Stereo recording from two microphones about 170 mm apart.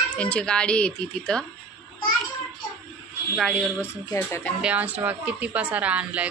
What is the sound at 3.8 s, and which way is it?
Speech, 15° left (ahead or behind).